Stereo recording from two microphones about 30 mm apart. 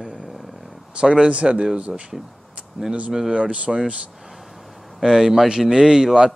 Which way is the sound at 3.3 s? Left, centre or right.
Right.